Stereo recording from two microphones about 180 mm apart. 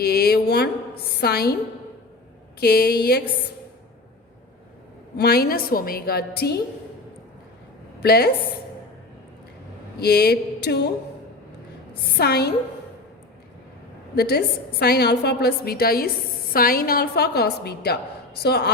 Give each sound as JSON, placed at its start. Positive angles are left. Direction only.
{"t": 0.0, "sound": "a woman's voice", "side_deg": 60}
{"t": 2.6, "sound": "a woman's voice", "side_deg": 60}
{"t": 5.1, "sound": "a woman's voice", "side_deg": 60}
{"t": 8.0, "sound": "a woman's voice", "side_deg": 60}
{"t": 10.0, "sound": "a woman's voice", "side_deg": 65}
{"t": 12.1, "sound": "a woman's voice", "side_deg": 65}
{"t": 14.2, "sound": "a woman's voice", "side_deg": 60}